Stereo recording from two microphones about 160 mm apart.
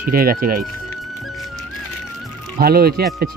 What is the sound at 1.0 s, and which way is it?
Music, centre (ahead or behind).